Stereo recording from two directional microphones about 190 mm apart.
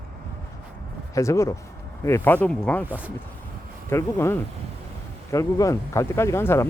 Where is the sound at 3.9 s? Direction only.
15° left (ahead or behind).